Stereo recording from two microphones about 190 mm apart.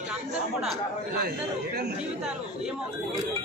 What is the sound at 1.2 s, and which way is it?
Speech, 60° right (ahead or behind).